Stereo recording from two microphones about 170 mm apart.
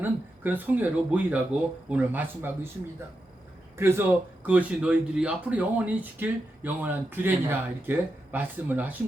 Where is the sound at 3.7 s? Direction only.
15° right (ahead or behind).